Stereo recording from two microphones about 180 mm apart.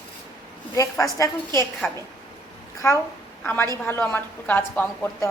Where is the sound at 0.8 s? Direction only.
20° left (ahead or behind).